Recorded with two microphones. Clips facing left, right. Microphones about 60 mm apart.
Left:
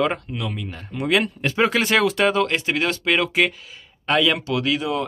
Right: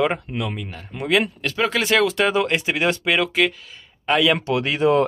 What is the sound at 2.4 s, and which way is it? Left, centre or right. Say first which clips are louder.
Speech: even; centre.